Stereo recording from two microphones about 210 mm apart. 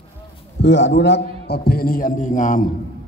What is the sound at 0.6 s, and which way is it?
A man's voice, 55° left (ahead or behind).